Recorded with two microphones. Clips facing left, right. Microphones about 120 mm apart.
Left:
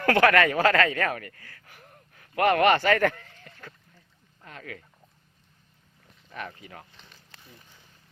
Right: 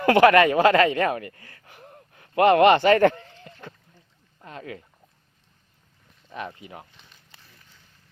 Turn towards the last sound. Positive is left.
turn(degrees=-20)  # may be behind; listen again after turning